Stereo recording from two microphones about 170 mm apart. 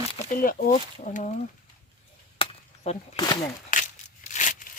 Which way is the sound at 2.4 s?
35° left (ahead or behind).